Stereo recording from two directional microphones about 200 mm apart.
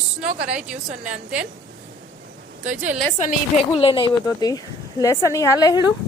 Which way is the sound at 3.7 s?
25° left (ahead or behind).